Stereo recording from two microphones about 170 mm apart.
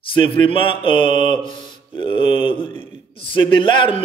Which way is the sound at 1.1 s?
45° right (ahead or behind).